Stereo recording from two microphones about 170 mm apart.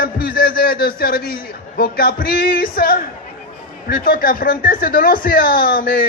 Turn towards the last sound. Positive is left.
turn(degrees=60)  # may be behind; listen again after turning